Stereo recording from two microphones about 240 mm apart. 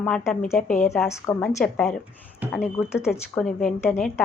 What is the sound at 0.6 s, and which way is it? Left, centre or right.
Speech, left.